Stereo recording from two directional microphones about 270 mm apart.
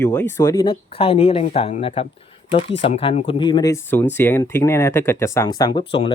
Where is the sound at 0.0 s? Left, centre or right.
Centre.